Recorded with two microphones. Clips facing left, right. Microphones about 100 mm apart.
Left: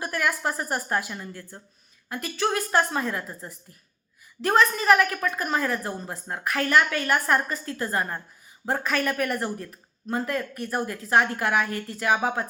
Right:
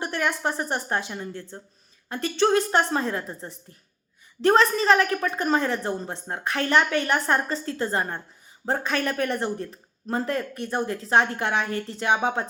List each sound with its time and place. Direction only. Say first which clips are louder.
0.0 s a woman's voice: right 1 dB; 25° right (ahead or behind)